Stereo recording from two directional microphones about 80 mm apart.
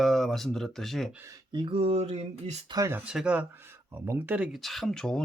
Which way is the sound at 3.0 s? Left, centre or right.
Centre.